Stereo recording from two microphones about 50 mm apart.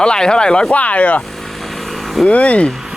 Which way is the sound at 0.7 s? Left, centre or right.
Left.